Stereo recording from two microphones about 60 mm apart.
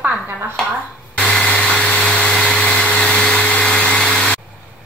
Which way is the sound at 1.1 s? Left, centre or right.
Centre.